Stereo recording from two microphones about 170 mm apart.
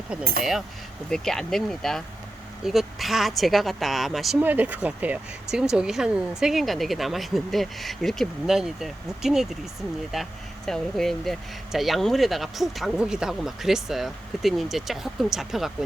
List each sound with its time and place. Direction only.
1.1 s speech: 5° left (ahead or behind)